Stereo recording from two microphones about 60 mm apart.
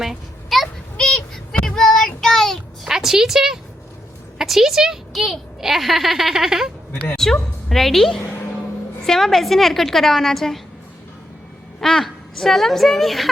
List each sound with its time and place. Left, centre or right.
0.0 s a sound: centre
0.9 s a sound: centre
1.6 s child singing: centre
2.8 s a woman's voice: centre
7.2 s a woman's voice: centre
11.8 s a woman's voice: centre